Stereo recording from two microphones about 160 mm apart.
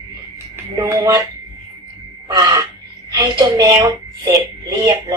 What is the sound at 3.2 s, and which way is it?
A woman's voice, 25° right (ahead or behind).